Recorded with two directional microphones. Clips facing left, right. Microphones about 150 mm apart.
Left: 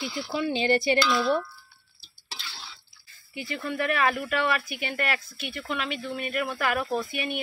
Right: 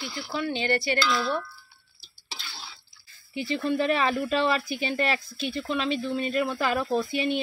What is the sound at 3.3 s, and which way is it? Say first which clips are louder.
Speech: right 5 dB; 25° right (ahead or behind).